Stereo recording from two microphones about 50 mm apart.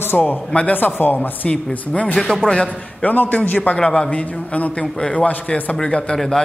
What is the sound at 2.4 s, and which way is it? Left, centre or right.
Speech, left.